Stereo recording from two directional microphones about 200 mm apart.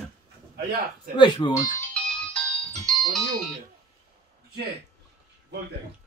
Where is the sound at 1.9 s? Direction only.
5° left (ahead or behind).